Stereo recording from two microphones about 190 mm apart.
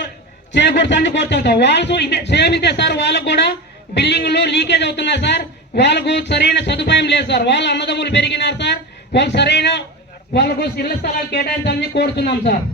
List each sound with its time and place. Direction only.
0.5 s a man's voice: 65° left (ahead or behind)